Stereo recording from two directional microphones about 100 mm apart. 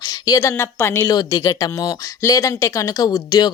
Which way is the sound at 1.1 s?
40° left (ahead or behind).